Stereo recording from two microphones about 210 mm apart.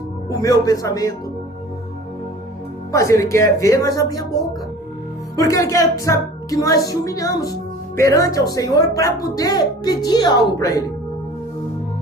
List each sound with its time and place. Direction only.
0.3 s speech: 15° left (ahead or behind)
2.9 s speech: 15° left (ahead or behind)